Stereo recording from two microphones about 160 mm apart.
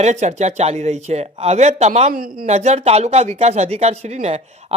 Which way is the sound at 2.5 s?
45° right (ahead or behind).